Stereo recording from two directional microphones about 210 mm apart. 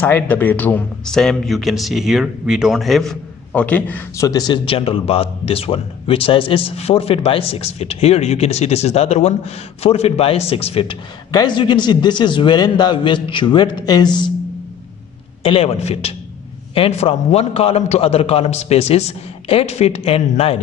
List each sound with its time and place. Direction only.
0.0 s speech: 10° left (ahead or behind)
15.4 s speech: 25° left (ahead or behind)